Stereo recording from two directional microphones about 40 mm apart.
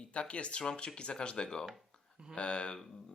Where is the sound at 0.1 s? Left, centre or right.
Left.